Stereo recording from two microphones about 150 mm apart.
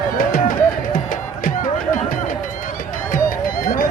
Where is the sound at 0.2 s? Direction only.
70° left (ahead or behind).